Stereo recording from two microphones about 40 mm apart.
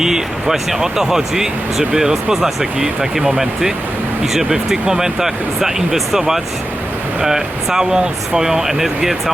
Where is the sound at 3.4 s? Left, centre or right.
Centre.